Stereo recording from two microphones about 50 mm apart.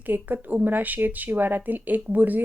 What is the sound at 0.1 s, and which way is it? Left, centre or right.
A woman's voice, right.